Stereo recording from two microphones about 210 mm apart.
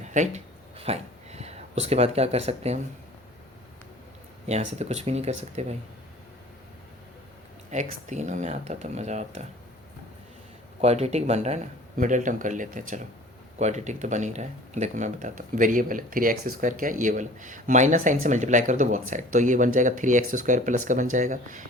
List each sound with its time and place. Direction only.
0.0 s a sound: 35° right (ahead or behind)
4.8 s speech: 30° right (ahead or behind)
7.7 s speech: 35° right (ahead or behind)
10.8 s speech: 30° right (ahead or behind)